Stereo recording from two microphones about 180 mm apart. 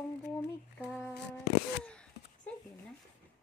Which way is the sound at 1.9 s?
5° left (ahead or behind).